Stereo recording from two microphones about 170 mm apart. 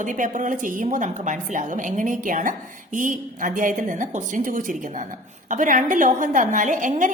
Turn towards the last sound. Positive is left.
turn(degrees=-50)  # may be behind; listen again after turning